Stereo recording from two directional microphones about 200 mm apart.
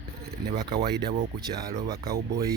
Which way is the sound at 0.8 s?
55° right (ahead or behind).